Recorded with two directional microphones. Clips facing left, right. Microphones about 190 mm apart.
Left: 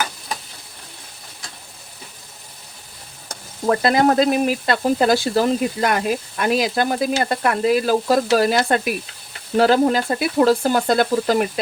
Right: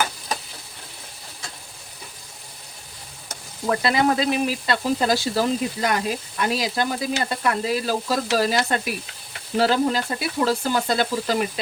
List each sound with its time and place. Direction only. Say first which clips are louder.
3.7 s speech: left 4 dB; 45° left (ahead or behind)